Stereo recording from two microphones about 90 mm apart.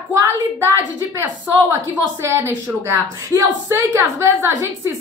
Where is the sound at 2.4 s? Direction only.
30° right (ahead or behind).